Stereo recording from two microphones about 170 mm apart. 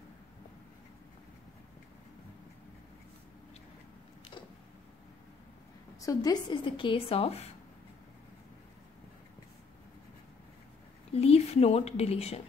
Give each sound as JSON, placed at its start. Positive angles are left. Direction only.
{"t": 5.9, "sound": "speech", "side_deg": 20}
{"t": 11.1, "sound": "speech", "side_deg": 40}